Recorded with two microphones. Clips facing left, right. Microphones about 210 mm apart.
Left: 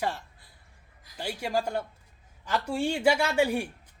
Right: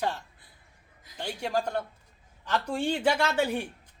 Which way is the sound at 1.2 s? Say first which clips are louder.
Even; 5° left (ahead or behind).